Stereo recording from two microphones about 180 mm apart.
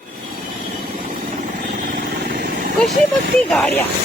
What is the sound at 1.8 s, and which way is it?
Vehicle, 55° right (ahead or behind).